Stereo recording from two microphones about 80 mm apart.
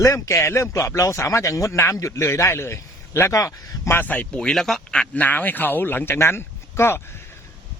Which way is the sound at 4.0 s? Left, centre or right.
Centre.